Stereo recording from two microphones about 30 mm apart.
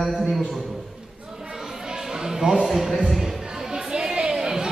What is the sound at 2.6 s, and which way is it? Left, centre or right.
Speech, centre.